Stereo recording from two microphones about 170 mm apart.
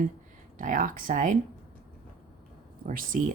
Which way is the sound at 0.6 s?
50° right (ahead or behind).